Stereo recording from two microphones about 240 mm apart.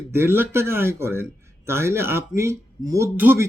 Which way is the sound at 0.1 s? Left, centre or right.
Centre.